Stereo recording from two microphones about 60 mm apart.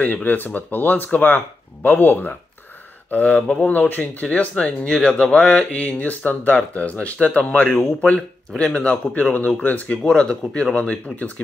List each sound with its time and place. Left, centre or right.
0.0 s speech: left
8.0 s speech: centre
10.0 s speech: centre